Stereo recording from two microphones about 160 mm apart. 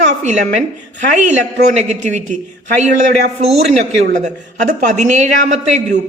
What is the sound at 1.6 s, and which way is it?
A man's voice, 50° right (ahead or behind).